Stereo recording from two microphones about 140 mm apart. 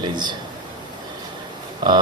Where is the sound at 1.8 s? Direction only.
30° right (ahead or behind).